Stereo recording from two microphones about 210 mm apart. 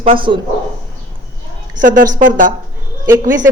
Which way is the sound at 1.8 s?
40° right (ahead or behind).